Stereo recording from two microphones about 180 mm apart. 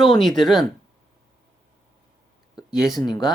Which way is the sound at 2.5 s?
Centre (ahead or behind).